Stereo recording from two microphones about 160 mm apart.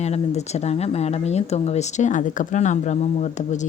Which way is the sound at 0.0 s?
45° left (ahead or behind).